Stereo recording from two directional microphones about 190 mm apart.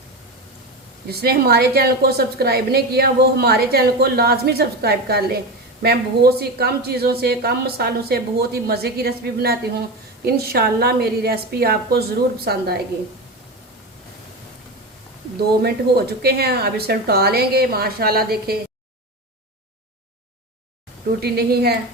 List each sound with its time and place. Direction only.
1.0 s a woman's voice: 55° right (ahead or behind)
15.6 s a woman's voice: 55° right (ahead or behind)
21.2 s a woman's voice: 55° right (ahead or behind)